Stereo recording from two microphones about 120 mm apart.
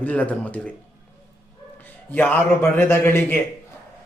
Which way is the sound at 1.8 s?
15° left (ahead or behind).